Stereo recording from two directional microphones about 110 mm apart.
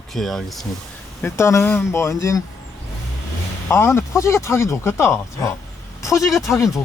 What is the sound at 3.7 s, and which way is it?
Speech, 25° left (ahead or behind).